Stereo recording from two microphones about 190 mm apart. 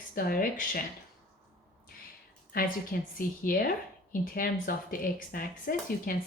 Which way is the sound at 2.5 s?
50° left (ahead or behind).